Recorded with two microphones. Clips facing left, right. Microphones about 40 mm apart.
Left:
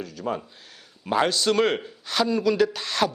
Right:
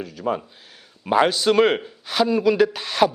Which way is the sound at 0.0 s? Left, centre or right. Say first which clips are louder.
Right 4 dB; centre.